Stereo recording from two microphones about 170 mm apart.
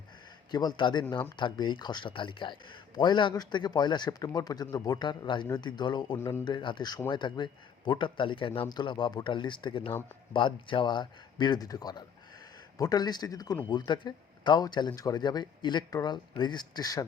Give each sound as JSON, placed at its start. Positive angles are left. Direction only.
{"t": 0.5, "sound": "a man's voice", "side_deg": 25}